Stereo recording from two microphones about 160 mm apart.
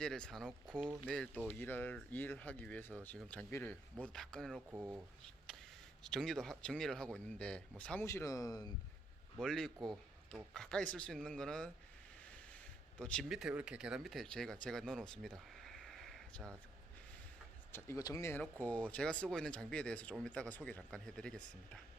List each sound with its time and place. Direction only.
0.0 s speech: 5° left (ahead or behind)
4.7 s speech: 10° right (ahead or behind)
6.0 s speech: centre (ahead or behind)
8.0 s speech: 20° left (ahead or behind)
9.4 s speech: 5° left (ahead or behind)
17.7 s speech: 15° left (ahead or behind)